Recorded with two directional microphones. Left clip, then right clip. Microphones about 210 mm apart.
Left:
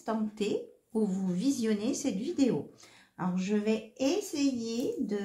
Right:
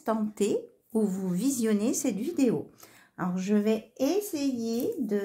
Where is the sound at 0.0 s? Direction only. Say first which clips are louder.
Right 5 dB; 50° right (ahead or behind).